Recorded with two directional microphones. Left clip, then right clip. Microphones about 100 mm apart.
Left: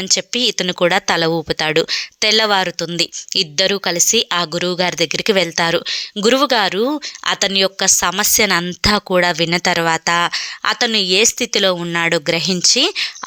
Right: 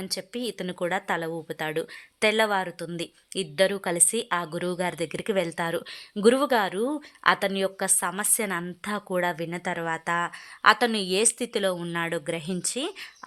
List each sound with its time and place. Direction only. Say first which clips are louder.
0.1 s a woman's voice: left 17 dB; 35° left (ahead or behind)
2.3 s a woman's voice: left 10 dB; 30° left (ahead or behind)
3.9 s speech: left 11 dB; 20° left (ahead or behind)
5.3 s a woman's voice: left 10 dB; 35° left (ahead or behind)
5.9 s speech: left 7 dB; 20° left (ahead or behind)
8.5 s a woman's voice: left 15 dB; 40° left (ahead or behind)
10.6 s speech: left 4 dB; 15° left (ahead or behind)
11.6 s a woman's voice: left 11 dB; 35° left (ahead or behind)
12.0 s speech: left 15 dB; 50° left (ahead or behind)
12.4 s a woman's voice: left 17 dB; 35° left (ahead or behind)